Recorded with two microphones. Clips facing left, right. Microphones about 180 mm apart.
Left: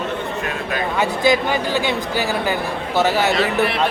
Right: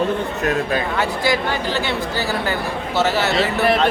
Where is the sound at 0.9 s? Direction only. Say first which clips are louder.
Left 7 dB; 20° left (ahead or behind).